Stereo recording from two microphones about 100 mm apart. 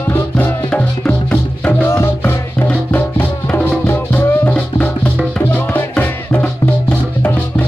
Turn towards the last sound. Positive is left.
turn(degrees=15)  # may be behind; listen again after turning